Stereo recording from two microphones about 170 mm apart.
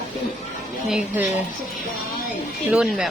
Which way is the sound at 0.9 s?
10° right (ahead or behind).